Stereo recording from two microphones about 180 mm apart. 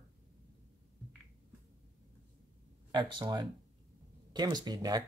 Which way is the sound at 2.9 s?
25° right (ahead or behind).